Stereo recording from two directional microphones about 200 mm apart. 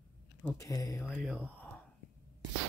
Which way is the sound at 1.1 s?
5° right (ahead or behind).